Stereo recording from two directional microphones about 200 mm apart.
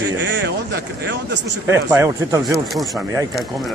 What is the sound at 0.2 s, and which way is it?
Speech, 65° right (ahead or behind).